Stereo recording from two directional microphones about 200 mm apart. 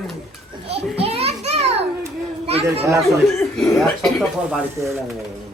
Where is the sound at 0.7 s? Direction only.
30° right (ahead or behind).